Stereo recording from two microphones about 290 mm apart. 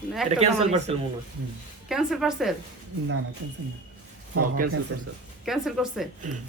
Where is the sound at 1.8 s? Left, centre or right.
Centre.